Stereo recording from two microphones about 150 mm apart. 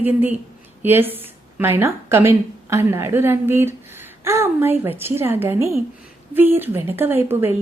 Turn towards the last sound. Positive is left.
turn(degrees=-15)  # may be behind; listen again after turning